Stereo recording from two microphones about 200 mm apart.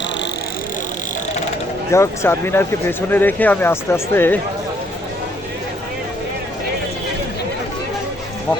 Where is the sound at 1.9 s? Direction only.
15° left (ahead or behind).